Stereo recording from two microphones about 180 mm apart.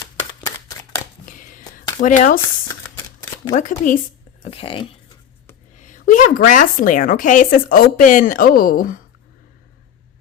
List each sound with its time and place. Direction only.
1.2 s a sound: 45° left (ahead or behind)
3.5 s a woman's voice: 45° left (ahead or behind)
4.4 s speech: 30° left (ahead or behind)
5.8 s a woman's voice: 45° left (ahead or behind)